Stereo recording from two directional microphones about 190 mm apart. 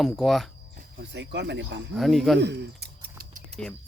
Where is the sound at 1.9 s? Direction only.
Centre (ahead or behind).